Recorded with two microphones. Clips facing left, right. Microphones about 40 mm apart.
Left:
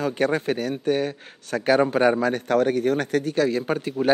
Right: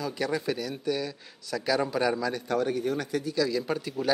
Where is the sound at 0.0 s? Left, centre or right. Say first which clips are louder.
Left 7 dB; left.